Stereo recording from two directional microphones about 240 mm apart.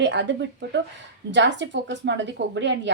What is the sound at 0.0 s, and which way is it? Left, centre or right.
A woman's voice, right.